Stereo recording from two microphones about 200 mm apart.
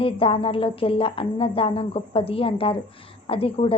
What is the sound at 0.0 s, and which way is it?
A woman's voice, 25° left (ahead or behind).